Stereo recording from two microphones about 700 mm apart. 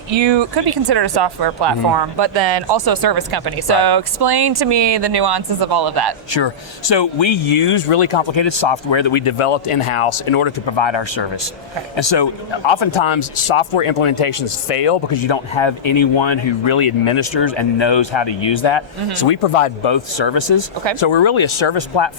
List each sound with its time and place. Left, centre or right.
0.1 s speech: right
6.3 s speech: left